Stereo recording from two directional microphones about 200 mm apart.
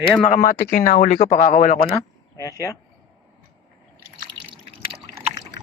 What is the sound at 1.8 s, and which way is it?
Speech, 15° left (ahead or behind).